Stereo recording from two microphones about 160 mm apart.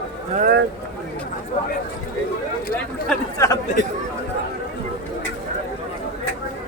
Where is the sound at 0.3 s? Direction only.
70° right (ahead or behind).